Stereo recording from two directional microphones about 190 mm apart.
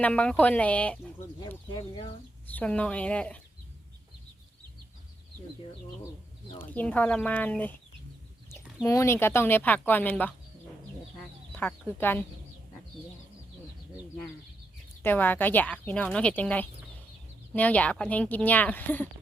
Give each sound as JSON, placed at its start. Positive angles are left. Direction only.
{"t": 0.0, "sound": "speech", "side_deg": 5}
{"t": 1.7, "sound": "speech", "side_deg": 25}
{"t": 2.6, "sound": "speech", "side_deg": 5}
{"t": 6.6, "sound": "speech", "side_deg": 10}
{"t": 11.5, "sound": "speech", "side_deg": 10}
{"t": 15.0, "sound": "speech", "side_deg": 10}